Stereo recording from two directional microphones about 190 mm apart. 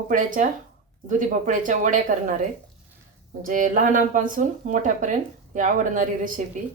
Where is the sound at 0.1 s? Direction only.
45° right (ahead or behind).